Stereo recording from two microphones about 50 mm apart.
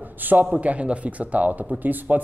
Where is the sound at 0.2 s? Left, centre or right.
Right.